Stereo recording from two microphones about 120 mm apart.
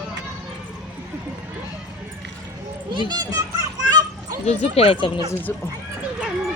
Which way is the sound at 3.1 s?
30° right (ahead or behind).